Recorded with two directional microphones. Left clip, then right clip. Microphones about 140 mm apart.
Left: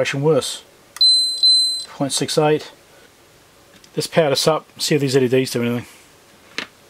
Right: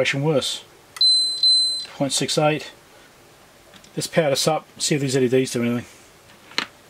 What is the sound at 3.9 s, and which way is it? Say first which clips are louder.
Speech: left 3 dB; 25° left (ahead or behind).